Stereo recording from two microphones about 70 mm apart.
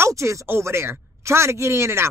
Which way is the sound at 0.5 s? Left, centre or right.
Right.